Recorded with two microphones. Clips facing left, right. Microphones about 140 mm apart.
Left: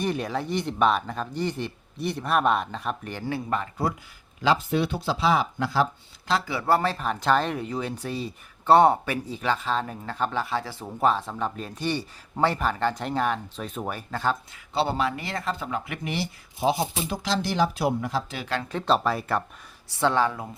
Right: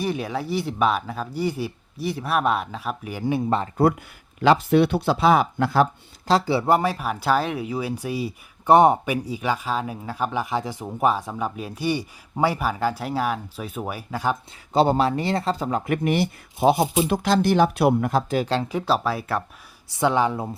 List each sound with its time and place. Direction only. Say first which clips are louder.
0.0 s speech: right 1 dB; 5° right (ahead or behind)
3.3 s speech: right 6 dB; 30° right (ahead or behind)
4.4 s speech: right 6 dB; 65° right (ahead or behind)
6.2 s speech: right 5 dB; 35° right (ahead or behind)
6.7 s speech: right 2 dB; 10° right (ahead or behind)
14.7 s speech: right 6 dB; 40° right (ahead or behind)
18.7 s speech: right 1 dB; 5° right (ahead or behind)
19.9 s speech: right 2 dB; 15° right (ahead or behind)